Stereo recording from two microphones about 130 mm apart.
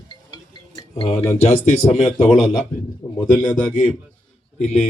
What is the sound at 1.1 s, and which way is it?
Speech, 20° left (ahead or behind).